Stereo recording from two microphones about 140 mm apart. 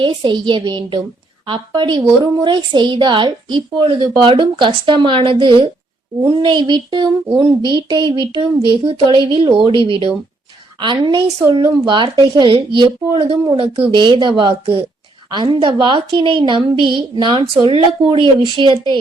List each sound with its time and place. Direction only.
0.0 s a woman's voice: 35° right (ahead or behind)
14.6 s speech: 45° right (ahead or behind)
15.3 s a woman's voice: 35° right (ahead or behind)